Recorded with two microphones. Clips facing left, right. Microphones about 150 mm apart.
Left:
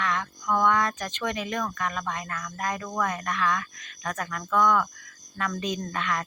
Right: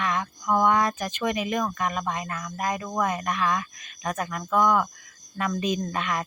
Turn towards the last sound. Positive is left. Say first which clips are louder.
# right 2 dB
turn(degrees=-15)  # may be behind; listen again after turning